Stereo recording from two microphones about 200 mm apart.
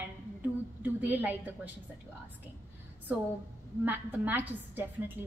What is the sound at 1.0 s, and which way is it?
Speech, 10° right (ahead or behind).